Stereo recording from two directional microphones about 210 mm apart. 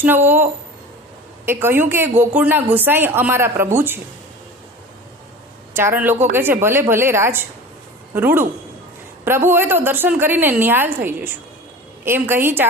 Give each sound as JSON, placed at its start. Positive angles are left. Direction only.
{"t": 0.0, "sound": "a woman's voice", "side_deg": -10}
{"t": 1.5, "sound": "a woman's voice", "side_deg": -10}
{"t": 5.7, "sound": "a woman's voice", "side_deg": -10}
{"t": 9.5, "sound": "a woman's voice", "side_deg": -10}